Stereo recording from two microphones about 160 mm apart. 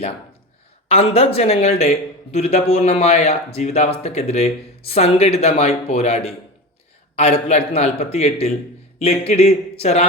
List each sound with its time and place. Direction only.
0.9 s a man's voice: 40° left (ahead or behind)